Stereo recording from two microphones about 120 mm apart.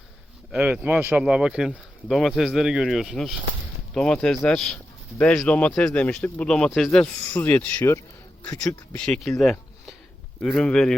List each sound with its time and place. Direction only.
0.5 s speech: 10° right (ahead or behind)
9.4 s a sound: 5° left (ahead or behind)
10.4 s speech: 5° left (ahead or behind)